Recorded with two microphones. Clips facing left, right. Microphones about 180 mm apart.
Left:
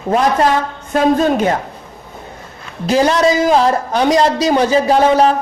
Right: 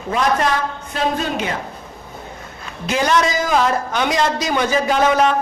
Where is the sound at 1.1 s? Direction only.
45° left (ahead or behind).